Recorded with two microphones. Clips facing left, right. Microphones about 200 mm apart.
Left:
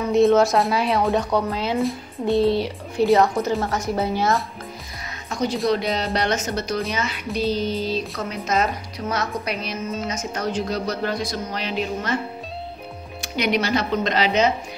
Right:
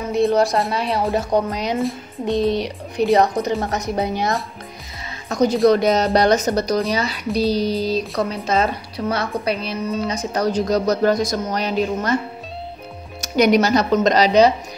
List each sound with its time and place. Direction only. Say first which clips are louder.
0.1 s speech: left 1 dB; centre (ahead or behind)
1.3 s speech: right 2 dB; 15° right (ahead or behind)
1.8 s music: right 1 dB; centre (ahead or behind)
2.2 s speech: even; 15° right (ahead or behind)
5.3 s speech: right 7 dB; 40° right (ahead or behind)
13.2 s speech: right 7 dB; 40° right (ahead or behind)